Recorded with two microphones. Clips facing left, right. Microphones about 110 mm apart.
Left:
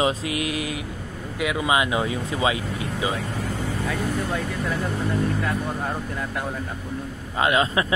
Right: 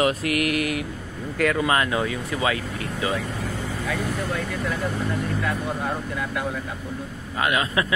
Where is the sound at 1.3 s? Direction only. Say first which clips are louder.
Right 1 dB; 10° left (ahead or behind).